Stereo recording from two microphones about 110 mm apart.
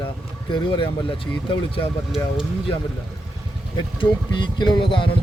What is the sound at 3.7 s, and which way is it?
A man's voice, 45° left (ahead or behind).